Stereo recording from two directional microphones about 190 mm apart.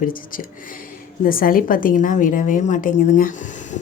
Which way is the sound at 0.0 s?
45° left (ahead or behind).